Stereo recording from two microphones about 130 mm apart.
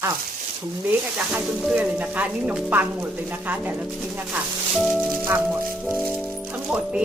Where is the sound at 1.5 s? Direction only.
Centre (ahead or behind).